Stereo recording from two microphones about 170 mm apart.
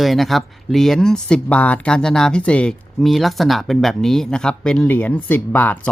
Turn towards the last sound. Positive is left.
turn(degrees=10)  # may be behind; listen again after turning